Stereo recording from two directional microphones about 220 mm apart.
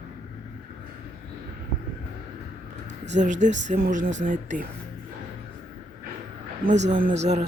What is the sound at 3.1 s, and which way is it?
Speech, 35° right (ahead or behind).